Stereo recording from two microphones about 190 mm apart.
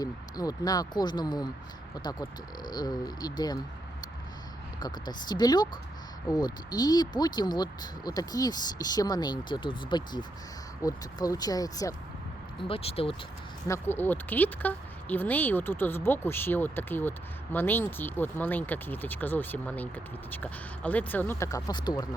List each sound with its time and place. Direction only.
0.0 s speech: 20° left (ahead or behind)
4.8 s speech: 20° left (ahead or behind)
12.6 s speech: 30° left (ahead or behind)
13.7 s speech: 10° left (ahead or behind)